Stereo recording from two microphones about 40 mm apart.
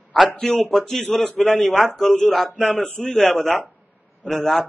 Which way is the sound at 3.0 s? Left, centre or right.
Centre.